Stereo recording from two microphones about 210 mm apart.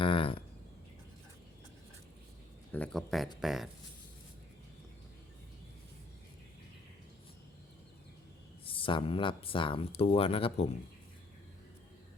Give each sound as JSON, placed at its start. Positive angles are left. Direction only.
{"t": 0.0, "sound": "a sound", "side_deg": 25}
{"t": 2.7, "sound": "speech", "side_deg": 5}
{"t": 8.6, "sound": "speech", "side_deg": 25}